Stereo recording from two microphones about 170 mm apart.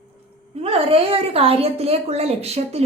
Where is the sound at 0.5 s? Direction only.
35° right (ahead or behind).